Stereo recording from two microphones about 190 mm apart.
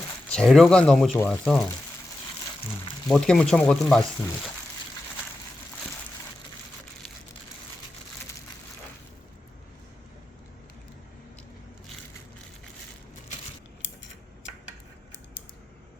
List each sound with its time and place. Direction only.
0.3 s speech: 5° left (ahead or behind)
3.1 s speech: 5° left (ahead or behind)